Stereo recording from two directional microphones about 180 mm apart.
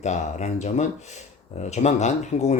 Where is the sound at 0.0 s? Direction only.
40° left (ahead or behind).